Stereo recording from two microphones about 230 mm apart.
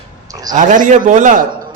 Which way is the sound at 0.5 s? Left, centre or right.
Right.